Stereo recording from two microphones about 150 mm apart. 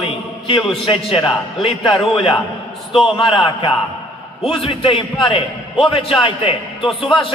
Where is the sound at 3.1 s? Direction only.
35° left (ahead or behind).